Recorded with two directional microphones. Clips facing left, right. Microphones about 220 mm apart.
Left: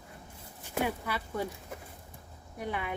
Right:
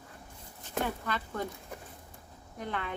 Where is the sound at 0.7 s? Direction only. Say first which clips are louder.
Left 1 dB; 10° left (ahead or behind).